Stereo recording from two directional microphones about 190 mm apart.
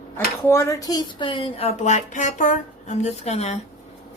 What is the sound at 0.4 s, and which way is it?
Speech, 15° left (ahead or behind).